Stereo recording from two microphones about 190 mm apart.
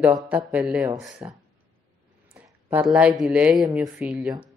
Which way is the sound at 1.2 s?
20° right (ahead or behind).